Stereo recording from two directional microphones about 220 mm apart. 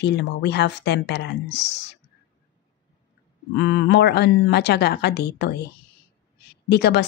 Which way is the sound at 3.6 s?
55° left (ahead or behind).